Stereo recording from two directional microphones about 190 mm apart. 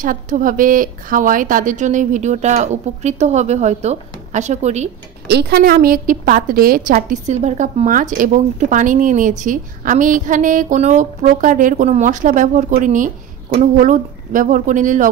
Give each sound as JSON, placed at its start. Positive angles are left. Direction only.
{"t": 0.0, "sound": "a woman's voice", "side_deg": -45}
{"t": 5.3, "sound": "a woman's voice", "side_deg": -55}